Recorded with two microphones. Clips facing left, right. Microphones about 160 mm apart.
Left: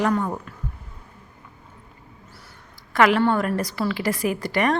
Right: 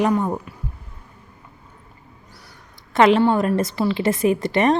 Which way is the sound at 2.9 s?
25° right (ahead or behind).